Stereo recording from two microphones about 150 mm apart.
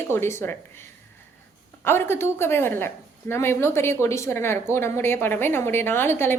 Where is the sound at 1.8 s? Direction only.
15° left (ahead or behind).